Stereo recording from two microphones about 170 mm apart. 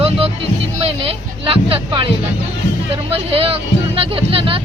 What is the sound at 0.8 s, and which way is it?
Speech, 35° right (ahead or behind).